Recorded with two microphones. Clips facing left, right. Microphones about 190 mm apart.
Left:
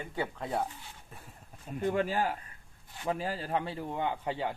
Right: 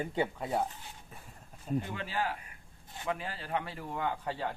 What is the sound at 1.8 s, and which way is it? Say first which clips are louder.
A man's voice: left 7 dB; 45° left (ahead or behind).